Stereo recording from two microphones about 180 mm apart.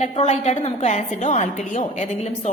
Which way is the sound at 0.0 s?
35° left (ahead or behind).